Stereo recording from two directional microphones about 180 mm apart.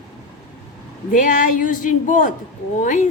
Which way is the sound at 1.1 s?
45° left (ahead or behind).